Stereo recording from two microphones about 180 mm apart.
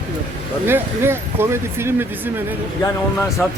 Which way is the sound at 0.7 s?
15° right (ahead or behind).